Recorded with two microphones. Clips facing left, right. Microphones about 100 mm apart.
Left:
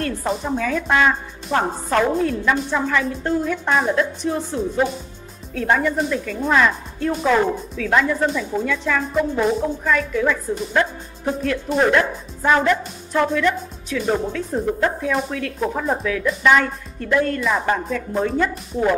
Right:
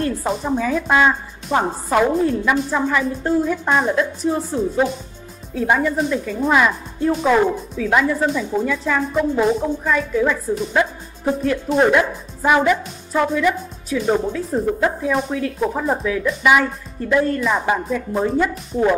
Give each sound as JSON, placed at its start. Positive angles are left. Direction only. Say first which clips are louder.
{"t": 0.2, "sound": "a woman's voice", "louder": "right 2 dB", "side_deg": -5}